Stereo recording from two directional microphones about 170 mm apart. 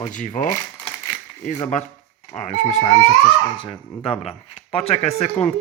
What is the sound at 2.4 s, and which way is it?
Speech, 45° left (ahead or behind).